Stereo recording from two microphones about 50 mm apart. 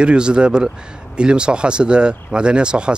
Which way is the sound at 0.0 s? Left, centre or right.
Centre.